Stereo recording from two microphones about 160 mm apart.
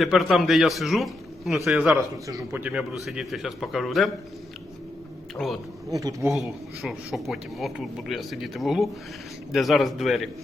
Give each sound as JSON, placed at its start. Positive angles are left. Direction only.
{"t": 0.0, "sound": "speech", "side_deg": 0}
{"t": 2.0, "sound": "speech", "side_deg": -20}
{"t": 5.4, "sound": "speech", "side_deg": 0}
{"t": 5.9, "sound": "speech", "side_deg": -20}
{"t": 6.3, "sound": "speech", "side_deg": 0}